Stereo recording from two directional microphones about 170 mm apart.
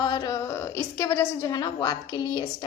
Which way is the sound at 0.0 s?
25° left (ahead or behind).